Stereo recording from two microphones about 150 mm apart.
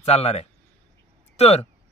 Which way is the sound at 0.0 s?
45° left (ahead or behind).